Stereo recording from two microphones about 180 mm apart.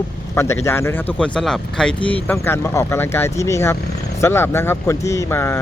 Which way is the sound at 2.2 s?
15° left (ahead or behind).